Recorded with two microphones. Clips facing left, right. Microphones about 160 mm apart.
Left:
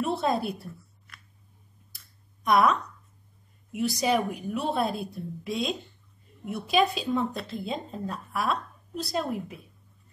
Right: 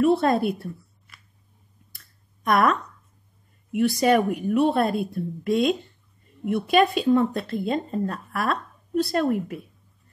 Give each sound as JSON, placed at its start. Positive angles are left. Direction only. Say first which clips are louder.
{"t": 0.3, "sound": "a woman's voice", "louder": "right 6 dB", "side_deg": 0}
{"t": 2.0, "sound": "clicking", "louder": "right 1 dB", "side_deg": 0}
{"t": 3.7, "sound": "speech", "louder": "right 6 dB", "side_deg": 0}